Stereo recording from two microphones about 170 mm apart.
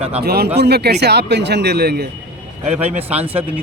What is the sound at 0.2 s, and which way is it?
A man's voice, 70° right (ahead or behind).